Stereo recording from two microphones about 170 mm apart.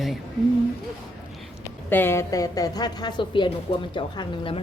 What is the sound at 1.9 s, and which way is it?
A woman's voice, 10° left (ahead or behind).